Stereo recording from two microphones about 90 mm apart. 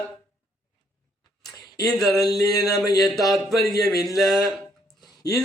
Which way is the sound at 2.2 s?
45° left (ahead or behind).